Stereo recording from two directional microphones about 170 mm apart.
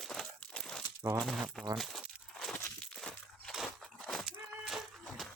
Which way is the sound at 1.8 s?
Centre (ahead or behind).